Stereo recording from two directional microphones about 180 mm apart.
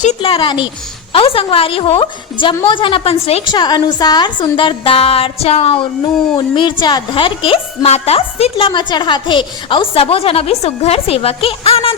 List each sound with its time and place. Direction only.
0.0 s a woman's voice: 35° left (ahead or behind)